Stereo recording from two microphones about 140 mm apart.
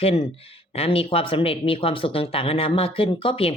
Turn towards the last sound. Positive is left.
turn(degrees=40)  # may be behind; listen again after turning